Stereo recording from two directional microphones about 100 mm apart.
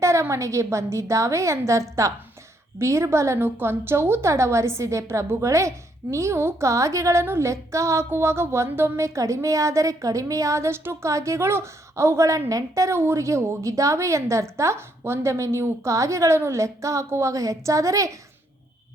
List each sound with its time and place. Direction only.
0.0 s a woman's voice: 30° right (ahead or behind)